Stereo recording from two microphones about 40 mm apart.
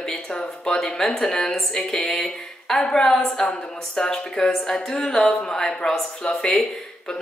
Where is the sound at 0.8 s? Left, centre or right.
Centre.